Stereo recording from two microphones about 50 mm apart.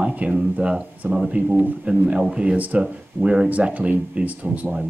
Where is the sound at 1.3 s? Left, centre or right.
Right.